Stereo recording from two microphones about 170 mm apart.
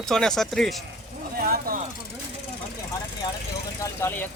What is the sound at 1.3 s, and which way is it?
Speech, 60° right (ahead or behind).